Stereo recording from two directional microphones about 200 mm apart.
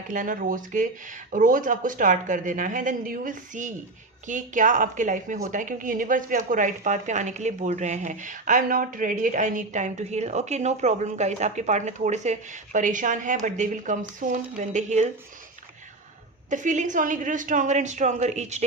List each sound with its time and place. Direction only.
0.1 s a woman's voice: 40° right (ahead or behind)
16.5 s a woman's voice: 40° right (ahead or behind)